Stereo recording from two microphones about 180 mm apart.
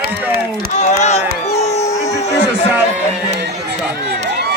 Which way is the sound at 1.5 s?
35° left (ahead or behind).